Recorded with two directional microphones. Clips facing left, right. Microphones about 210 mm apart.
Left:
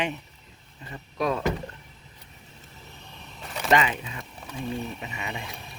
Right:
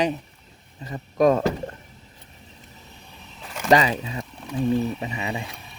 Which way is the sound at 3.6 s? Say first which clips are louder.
Right 4 dB; 35° right (ahead or behind).